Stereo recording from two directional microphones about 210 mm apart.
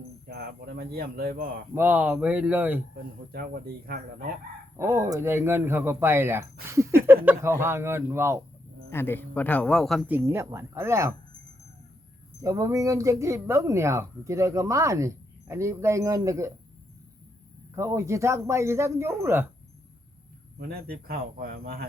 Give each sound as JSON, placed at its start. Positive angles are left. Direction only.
{"t": 0.3, "sound": "speech", "side_deg": -45}
{"t": 1.7, "sound": "speech", "side_deg": -10}
{"t": 3.3, "sound": "speech", "side_deg": -45}
{"t": 4.8, "sound": "speech", "side_deg": -15}
{"t": 8.9, "sound": "a man's voice", "side_deg": 10}
{"t": 10.2, "sound": "speech", "side_deg": -10}
{"t": 12.4, "sound": "speech", "side_deg": -15}
{"t": 17.7, "sound": "speech", "side_deg": -15}
{"t": 20.6, "sound": "speech", "side_deg": -45}